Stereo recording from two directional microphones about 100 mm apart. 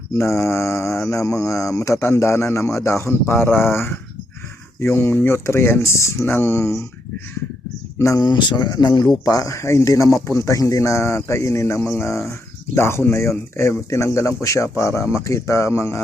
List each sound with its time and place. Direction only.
0.2 s speech: 30° left (ahead or behind)
7.9 s speech: 30° left (ahead or behind)
8.2 s speech: 50° left (ahead or behind); by 16.0 s 25° left (ahead or behind)